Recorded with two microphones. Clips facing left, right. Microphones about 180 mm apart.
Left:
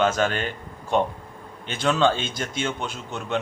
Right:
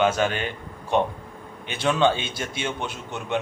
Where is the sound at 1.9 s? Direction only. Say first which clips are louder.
Even; 15° right (ahead or behind).